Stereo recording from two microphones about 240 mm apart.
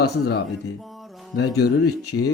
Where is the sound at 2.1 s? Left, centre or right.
Left.